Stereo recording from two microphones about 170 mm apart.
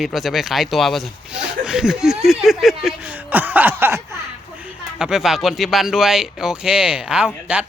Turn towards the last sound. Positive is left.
turn(degrees=-5)  # may be behind; listen again after turning